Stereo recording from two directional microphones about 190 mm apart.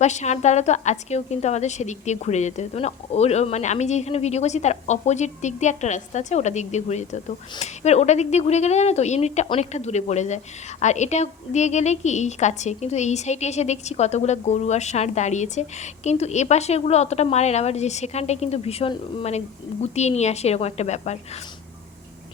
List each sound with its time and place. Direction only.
0.0 s a woman's voice: 35° left (ahead or behind)